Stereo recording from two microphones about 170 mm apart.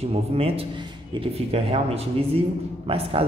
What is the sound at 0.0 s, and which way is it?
A man's voice, 35° right (ahead or behind).